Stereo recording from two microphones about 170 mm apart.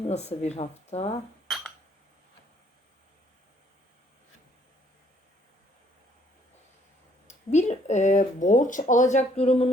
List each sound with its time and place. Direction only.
0.1 s speech: 40° left (ahead or behind)
1.5 s a sound: centre (ahead or behind)
7.3 s speech: 40° left (ahead or behind)